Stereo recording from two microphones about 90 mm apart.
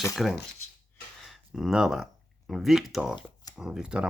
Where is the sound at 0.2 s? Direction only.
5° right (ahead or behind).